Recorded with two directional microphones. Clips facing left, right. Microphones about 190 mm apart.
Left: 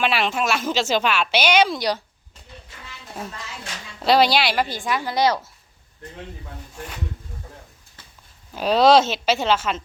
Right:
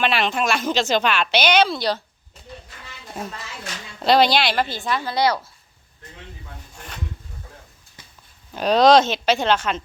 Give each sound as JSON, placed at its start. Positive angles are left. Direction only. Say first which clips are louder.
{"t": 0.0, "sound": "a woman's voice", "louder": "right 1 dB", "side_deg": 5}
{"t": 4.0, "sound": "a woman's voice", "louder": "right 1 dB", "side_deg": 5}
{"t": 8.5, "sound": "speech", "louder": "right 1 dB", "side_deg": 5}